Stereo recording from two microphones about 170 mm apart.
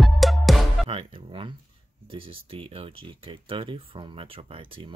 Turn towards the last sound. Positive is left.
turn(degrees=-30)  # may be behind; listen again after turning